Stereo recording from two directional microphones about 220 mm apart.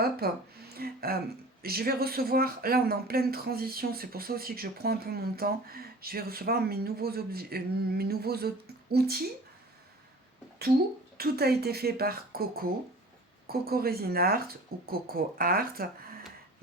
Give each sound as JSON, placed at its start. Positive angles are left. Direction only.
{"t": 0.0, "sound": "speech", "side_deg": -45}
{"t": 11.2, "sound": "speech", "side_deg": -45}